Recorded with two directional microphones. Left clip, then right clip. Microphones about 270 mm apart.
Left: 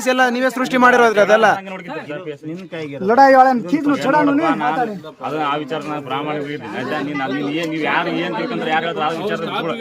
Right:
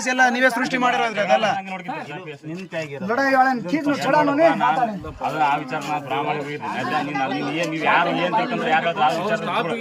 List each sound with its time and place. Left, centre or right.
0.0 s speech: centre
0.7 s speech: centre
3.1 s speech: centre
6.1 s speech: centre